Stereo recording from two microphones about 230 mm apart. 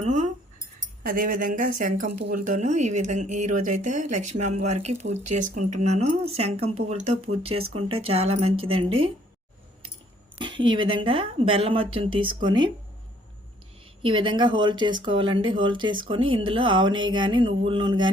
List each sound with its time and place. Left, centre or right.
0.0 s speech: right
10.6 s speech: right
14.0 s speech: right